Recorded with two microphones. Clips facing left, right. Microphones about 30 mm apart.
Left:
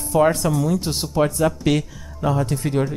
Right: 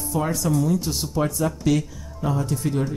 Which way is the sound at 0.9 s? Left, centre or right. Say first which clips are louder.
Left 4 dB; left.